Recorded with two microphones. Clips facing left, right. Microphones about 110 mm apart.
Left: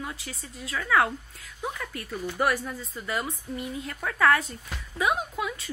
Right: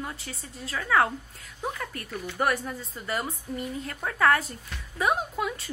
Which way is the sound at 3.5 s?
40° right (ahead or behind).